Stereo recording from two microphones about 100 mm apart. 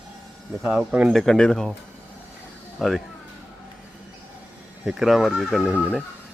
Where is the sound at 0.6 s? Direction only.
5° right (ahead or behind).